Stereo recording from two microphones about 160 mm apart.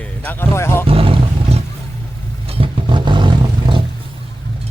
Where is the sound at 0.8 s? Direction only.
35° right (ahead or behind).